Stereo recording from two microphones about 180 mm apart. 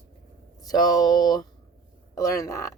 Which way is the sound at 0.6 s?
20° left (ahead or behind).